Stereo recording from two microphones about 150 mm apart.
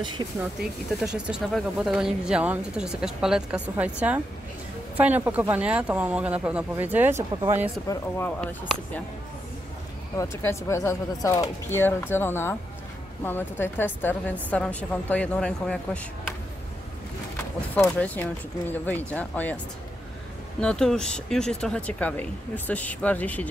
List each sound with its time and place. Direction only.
0.4 s speech: 5° right (ahead or behind)
8.4 s speech: 10° left (ahead or behind)
10.1 s speech: 20° left (ahead or behind)
17.8 s speech: 10° left (ahead or behind)
20.6 s speech: 5° left (ahead or behind)